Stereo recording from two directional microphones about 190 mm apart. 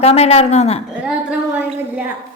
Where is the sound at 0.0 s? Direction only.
30° left (ahead or behind).